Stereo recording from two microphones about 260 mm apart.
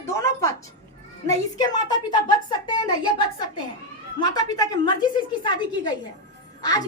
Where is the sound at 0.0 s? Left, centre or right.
Centre.